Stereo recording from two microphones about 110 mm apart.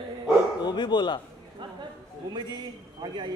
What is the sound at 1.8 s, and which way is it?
A man's voice, 45° right (ahead or behind).